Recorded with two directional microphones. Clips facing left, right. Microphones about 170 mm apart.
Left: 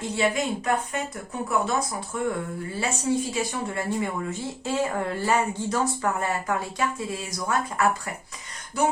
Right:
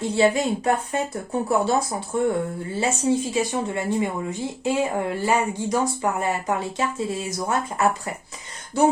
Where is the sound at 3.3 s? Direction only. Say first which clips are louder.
Right 4 dB; 20° right (ahead or behind).